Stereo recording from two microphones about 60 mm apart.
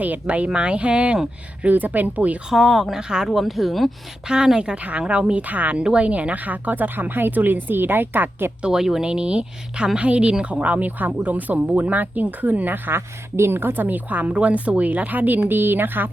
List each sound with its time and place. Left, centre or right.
0.0 s speech: right
1.6 s speech: right
2.5 s speech: centre
3.0 s a woman's voice: centre
3.2 s speech: centre
4.3 s speech: centre; by 8.5 s right
8.6 s a woman's voice: centre; by 16.0 s right